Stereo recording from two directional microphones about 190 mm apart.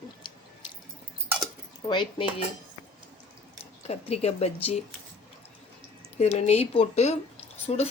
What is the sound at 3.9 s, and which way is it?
Speech, 30° left (ahead or behind).